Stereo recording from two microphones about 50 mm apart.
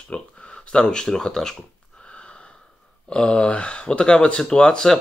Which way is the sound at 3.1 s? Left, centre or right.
Left.